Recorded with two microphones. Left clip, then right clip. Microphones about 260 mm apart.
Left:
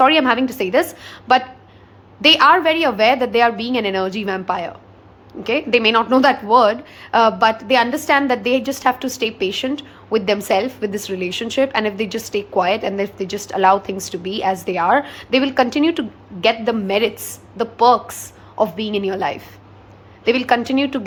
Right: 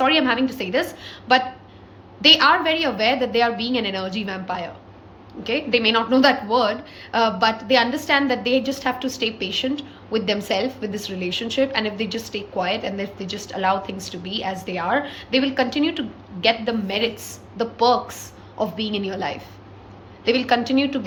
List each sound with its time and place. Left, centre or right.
0.0 s a woman's voice: centre